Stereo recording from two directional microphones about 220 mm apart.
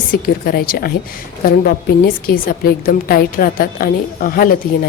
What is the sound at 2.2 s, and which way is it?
Speech, 40° left (ahead or behind).